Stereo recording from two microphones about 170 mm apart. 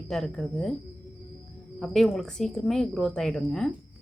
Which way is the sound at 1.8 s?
Centre (ahead or behind).